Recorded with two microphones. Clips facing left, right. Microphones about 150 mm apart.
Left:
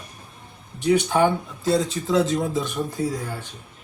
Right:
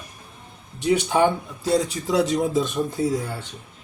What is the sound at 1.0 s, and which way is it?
Speech, 15° right (ahead or behind).